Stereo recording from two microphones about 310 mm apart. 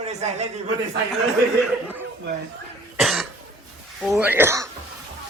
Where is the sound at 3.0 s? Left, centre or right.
Centre.